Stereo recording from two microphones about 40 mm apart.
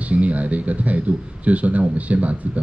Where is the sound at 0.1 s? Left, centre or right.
Right.